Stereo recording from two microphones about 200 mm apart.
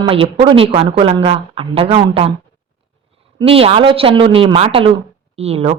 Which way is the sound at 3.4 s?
30° right (ahead or behind).